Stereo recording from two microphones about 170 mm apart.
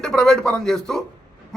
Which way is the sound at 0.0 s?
5° left (ahead or behind).